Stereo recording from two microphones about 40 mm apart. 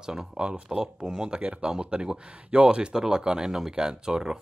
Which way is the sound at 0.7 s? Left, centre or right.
Centre.